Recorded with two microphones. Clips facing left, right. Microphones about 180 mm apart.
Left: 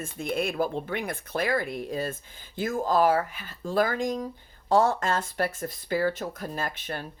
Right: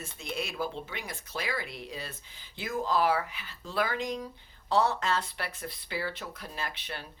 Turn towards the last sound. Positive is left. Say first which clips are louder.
# left 6 dB
turn(degrees=45)  # may be behind; listen again after turning